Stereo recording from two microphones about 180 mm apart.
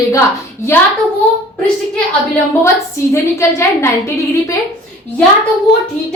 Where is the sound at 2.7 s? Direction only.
15° left (ahead or behind).